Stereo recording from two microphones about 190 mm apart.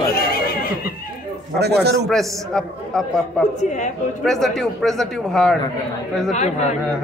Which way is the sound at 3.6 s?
40° left (ahead or behind).